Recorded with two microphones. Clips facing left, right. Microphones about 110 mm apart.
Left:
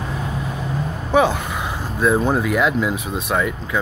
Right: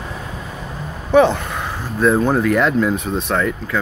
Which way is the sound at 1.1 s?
10° left (ahead or behind).